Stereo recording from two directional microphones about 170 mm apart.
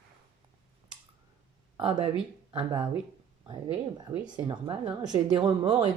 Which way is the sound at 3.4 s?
25° right (ahead or behind).